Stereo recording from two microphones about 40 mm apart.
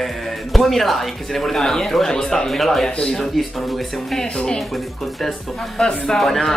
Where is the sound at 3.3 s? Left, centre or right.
Centre.